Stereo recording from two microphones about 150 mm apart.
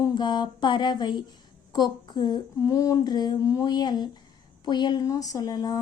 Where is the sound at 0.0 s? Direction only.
30° left (ahead or behind).